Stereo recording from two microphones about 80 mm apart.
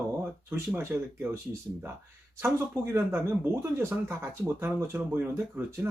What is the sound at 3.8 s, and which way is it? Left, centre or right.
Speech, right.